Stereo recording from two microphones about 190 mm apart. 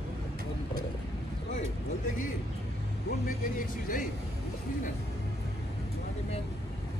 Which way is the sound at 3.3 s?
45° left (ahead or behind).